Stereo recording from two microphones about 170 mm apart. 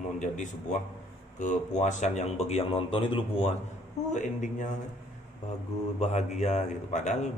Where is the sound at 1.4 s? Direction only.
45° left (ahead or behind).